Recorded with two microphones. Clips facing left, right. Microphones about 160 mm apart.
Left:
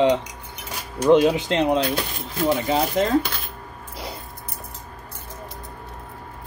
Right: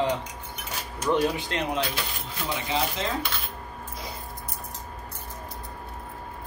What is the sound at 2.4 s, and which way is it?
Speech, 45° left (ahead or behind).